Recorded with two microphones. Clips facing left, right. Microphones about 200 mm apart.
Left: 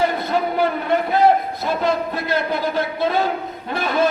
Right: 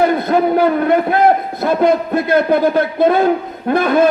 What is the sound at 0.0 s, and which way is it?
A man's voice, 55° right (ahead or behind).